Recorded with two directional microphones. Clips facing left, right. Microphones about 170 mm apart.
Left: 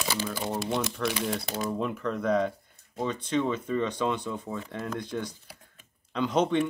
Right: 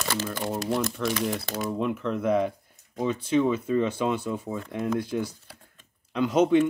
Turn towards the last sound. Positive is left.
turn(degrees=-5)  # may be behind; listen again after turning